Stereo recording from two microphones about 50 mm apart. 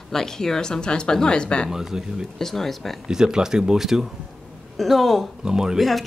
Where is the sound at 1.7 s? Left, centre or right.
Centre.